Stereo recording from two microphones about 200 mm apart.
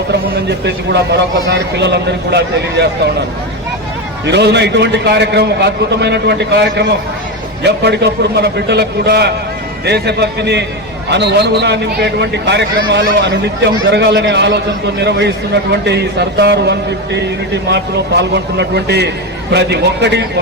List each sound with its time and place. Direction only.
0.1 s a man's voice: 55° right (ahead or behind)
4.3 s a man's voice: 55° right (ahead or behind)
15.9 s a man's voice: 55° right (ahead or behind)